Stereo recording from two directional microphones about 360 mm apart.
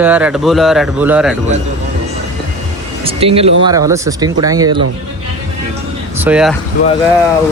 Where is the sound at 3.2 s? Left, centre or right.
Centre.